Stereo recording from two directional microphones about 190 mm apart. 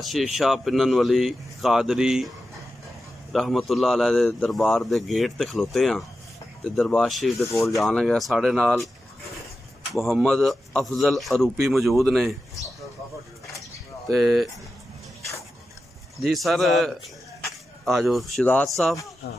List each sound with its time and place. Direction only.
0.0 s speech: centre (ahead or behind)
3.3 s speech: centre (ahead or behind)
9.9 s speech: centre (ahead or behind)
14.0 s speech: centre (ahead or behind)
16.2 s speech: centre (ahead or behind)
19.2 s speech: 55° left (ahead or behind)